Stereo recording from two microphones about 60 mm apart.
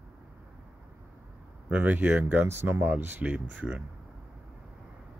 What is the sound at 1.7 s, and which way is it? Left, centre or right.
Speech, right.